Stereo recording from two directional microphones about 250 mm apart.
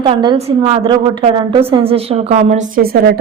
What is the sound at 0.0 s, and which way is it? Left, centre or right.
A woman's voice, centre.